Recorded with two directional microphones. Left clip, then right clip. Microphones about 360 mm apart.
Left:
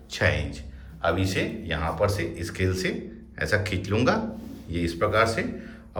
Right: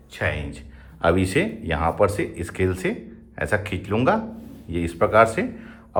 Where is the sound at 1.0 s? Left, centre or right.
Centre.